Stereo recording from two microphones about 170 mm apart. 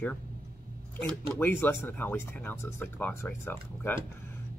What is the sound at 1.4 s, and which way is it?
Speech, 10° left (ahead or behind).